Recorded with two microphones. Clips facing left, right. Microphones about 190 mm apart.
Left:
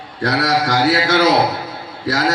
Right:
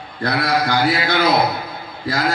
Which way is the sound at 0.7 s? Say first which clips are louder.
Left 3 dB; 85° left.